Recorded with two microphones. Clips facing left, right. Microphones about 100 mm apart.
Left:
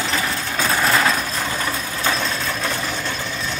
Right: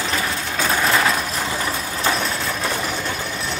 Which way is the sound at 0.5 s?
Centre (ahead or behind).